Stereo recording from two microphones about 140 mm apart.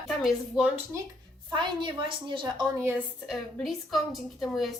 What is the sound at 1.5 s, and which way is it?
A woman's voice, 35° right (ahead or behind).